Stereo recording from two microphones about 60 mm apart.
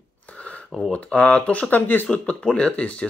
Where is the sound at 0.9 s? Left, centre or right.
Left.